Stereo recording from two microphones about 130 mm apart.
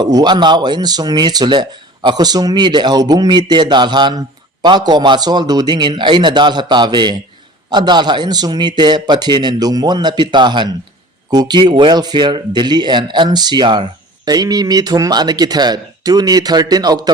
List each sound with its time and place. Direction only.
0.0 s speech: 30° right (ahead or behind)